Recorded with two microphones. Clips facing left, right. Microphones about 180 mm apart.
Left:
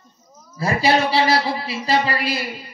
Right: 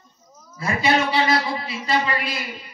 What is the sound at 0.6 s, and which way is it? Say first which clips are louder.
A man's voice: left 3 dB; 35° left (ahead or behind).